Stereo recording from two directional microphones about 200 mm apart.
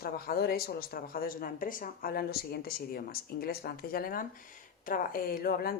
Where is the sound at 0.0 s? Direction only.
50° left (ahead or behind).